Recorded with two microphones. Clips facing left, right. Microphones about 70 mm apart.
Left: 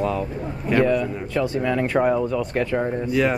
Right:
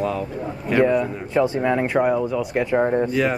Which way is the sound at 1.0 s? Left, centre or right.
Right.